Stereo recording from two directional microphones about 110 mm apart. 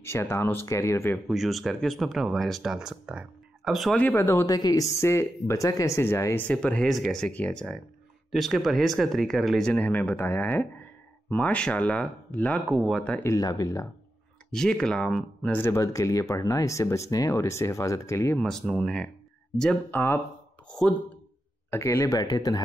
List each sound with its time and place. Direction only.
0.0 s speech: 25° left (ahead or behind)
1.2 s speech: centre (ahead or behind)
4.1 s speech: 25° left (ahead or behind)
4.5 s speech: 35° left (ahead or behind)
6.4 s speech: 10° left (ahead or behind)
9.7 s speech: 15° left (ahead or behind)
12.6 s speech: centre (ahead or behind)
13.2 s speech: 30° left (ahead or behind)
14.5 s speech: 5° left (ahead or behind)
15.5 s speech: 25° left (ahead or behind)
18.4 s speech: centre (ahead or behind)
21.6 s speech: 25° left (ahead or behind)